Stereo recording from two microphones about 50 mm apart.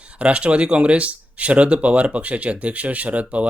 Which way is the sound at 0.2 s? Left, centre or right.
Right.